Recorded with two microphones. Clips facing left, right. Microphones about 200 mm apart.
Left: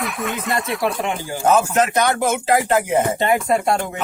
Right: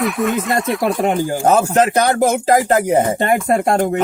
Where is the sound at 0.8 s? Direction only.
45° right (ahead or behind).